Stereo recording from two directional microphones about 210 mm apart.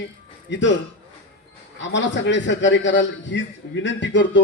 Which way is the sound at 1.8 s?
60° left (ahead or behind).